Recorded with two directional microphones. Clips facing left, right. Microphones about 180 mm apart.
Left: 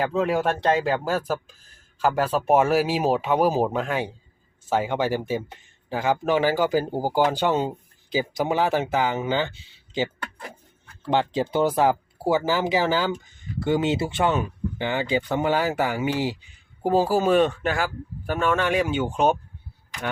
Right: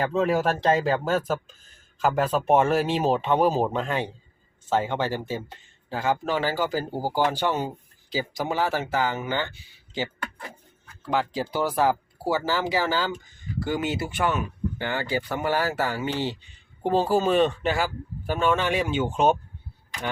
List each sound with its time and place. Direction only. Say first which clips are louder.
0.0 s speech: even; centre (ahead or behind)